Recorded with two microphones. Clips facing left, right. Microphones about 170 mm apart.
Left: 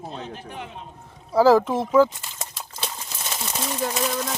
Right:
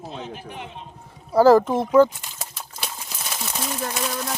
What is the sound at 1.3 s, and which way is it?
A man's voice, centre (ahead or behind).